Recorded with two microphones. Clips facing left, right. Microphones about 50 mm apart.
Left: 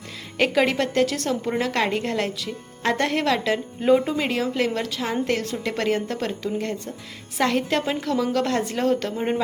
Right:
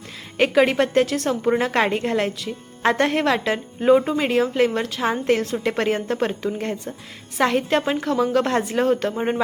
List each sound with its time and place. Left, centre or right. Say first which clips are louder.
0.3 s a woman's voice: right 3 dB; centre
1.5 s a woman's voice: right 5 dB; right
7.3 s a woman's voice: right 3 dB; centre